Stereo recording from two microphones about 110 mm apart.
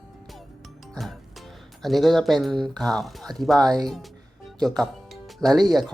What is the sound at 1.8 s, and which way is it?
Speech, centre (ahead or behind).